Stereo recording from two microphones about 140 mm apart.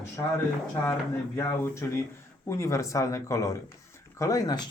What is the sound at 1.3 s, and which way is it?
Speech, 20° left (ahead or behind).